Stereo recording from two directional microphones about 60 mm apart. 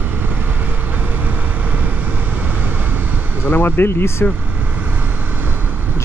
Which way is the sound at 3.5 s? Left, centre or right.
Left.